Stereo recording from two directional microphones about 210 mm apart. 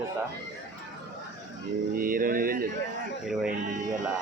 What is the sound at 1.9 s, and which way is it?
Speech, 40° right (ahead or behind).